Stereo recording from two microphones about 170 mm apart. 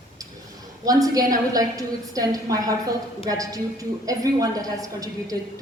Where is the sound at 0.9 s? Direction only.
20° right (ahead or behind).